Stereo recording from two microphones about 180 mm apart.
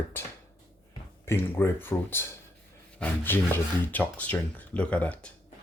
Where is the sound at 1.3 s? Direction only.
15° left (ahead or behind).